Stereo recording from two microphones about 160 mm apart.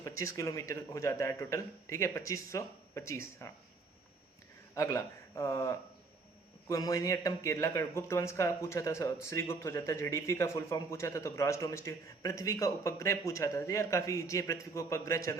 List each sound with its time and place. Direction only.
0.0 s a man's voice: 20° left (ahead or behind)
4.7 s a man's voice: 20° left (ahead or behind)